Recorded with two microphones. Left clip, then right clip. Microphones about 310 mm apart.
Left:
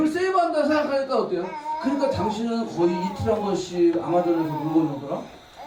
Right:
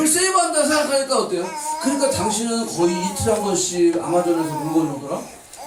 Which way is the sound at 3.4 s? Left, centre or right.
Left.